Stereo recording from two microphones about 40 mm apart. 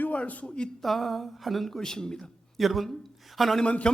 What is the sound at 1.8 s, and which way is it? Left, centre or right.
Speech, centre.